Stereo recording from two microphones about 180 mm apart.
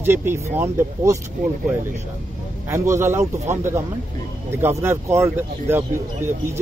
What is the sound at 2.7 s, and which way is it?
A man's voice, 15° right (ahead or behind).